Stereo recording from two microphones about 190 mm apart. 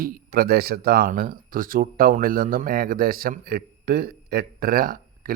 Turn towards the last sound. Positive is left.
turn(degrees=-50)  # may be behind; listen again after turning